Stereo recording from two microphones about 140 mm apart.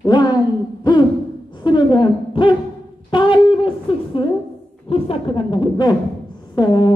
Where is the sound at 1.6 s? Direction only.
35° left (ahead or behind).